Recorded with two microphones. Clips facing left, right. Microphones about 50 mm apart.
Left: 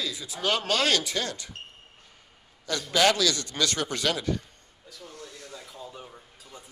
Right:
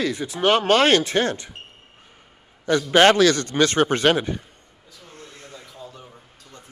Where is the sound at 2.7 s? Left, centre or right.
Right.